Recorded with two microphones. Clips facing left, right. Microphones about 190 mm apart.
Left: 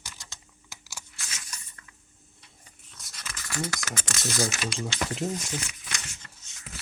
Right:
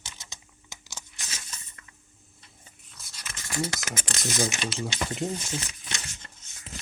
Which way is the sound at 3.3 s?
25° right (ahead or behind).